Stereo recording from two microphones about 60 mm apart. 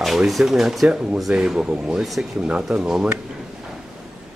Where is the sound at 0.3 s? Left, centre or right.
Centre.